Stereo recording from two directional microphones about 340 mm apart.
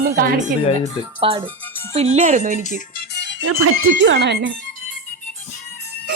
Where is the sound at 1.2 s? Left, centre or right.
Centre.